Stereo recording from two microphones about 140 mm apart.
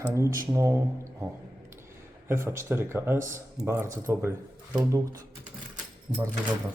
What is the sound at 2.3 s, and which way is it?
Speech, 20° right (ahead or behind).